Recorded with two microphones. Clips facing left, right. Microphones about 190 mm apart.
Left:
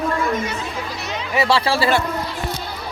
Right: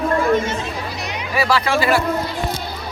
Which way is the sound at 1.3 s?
25° left (ahead or behind).